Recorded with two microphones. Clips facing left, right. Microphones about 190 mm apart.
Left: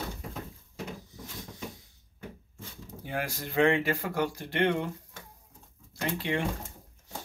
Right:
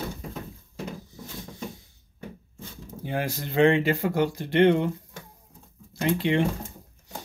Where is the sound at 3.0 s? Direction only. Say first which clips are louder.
Right 5 dB; 25° right (ahead or behind).